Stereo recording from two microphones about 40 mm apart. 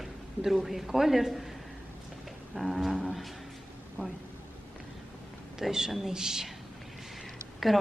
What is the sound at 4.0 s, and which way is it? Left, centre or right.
Speech, right.